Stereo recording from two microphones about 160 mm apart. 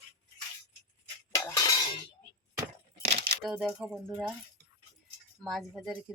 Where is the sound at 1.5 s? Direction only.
20° left (ahead or behind).